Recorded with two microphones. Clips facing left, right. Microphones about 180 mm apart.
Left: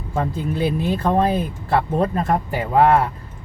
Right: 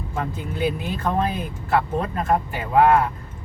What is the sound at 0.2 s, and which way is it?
Speech, 35° left (ahead or behind).